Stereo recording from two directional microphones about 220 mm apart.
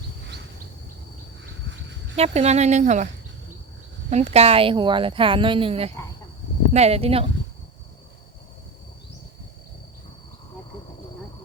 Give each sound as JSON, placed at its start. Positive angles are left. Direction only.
{"t": 2.1, "sound": "speech", "side_deg": -30}
{"t": 4.1, "sound": "speech", "side_deg": -30}